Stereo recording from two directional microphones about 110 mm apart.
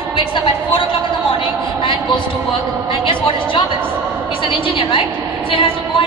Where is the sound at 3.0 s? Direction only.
50° left (ahead or behind).